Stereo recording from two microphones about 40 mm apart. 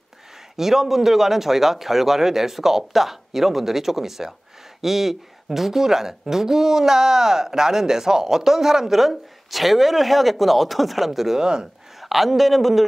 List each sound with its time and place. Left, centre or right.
0.6 s speech: centre
11.3 s speech: centre
12.0 s speech: centre